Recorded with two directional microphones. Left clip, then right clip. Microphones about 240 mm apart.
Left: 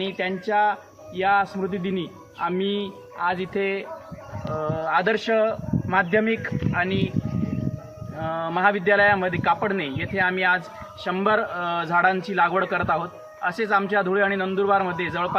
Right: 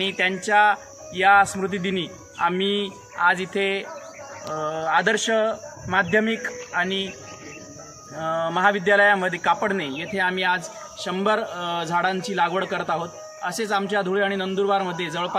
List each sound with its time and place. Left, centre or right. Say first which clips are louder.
0.0 s a man's voice: right 4 dB; centre
8.2 s a man's voice: right 1 dB; centre